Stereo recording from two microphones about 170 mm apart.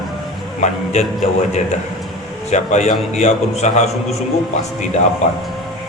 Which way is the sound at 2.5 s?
40° left (ahead or behind).